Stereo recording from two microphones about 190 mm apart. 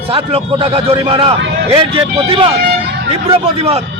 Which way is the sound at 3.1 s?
30° right (ahead or behind).